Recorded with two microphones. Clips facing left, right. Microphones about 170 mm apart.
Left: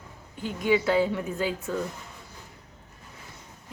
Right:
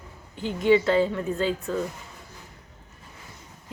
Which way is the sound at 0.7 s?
5° left (ahead or behind).